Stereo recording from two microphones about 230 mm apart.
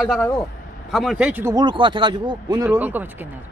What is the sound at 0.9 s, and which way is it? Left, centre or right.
Speech, centre.